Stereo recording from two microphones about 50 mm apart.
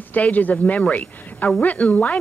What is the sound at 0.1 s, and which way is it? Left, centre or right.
Speech, left.